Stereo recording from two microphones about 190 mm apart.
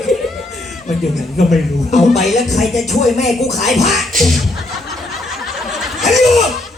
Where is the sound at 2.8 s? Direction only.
40° left (ahead or behind).